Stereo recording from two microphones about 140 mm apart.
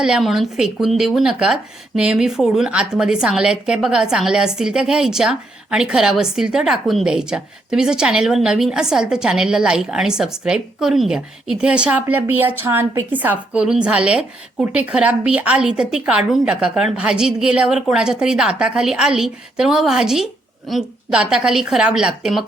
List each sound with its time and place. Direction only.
0.0 s a woman's voice: 5° right (ahead or behind)